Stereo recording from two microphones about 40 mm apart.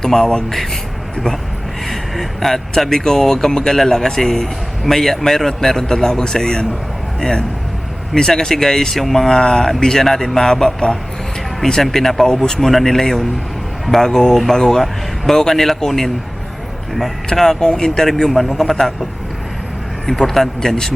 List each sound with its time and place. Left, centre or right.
0.0 s speech: centre
0.5 s speech: centre
1.9 s speech: centre
11.6 s speech: centre
17.3 s speech: centre
20.1 s speech: centre